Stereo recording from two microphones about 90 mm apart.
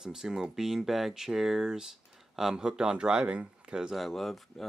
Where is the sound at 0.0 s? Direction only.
5° right (ahead or behind).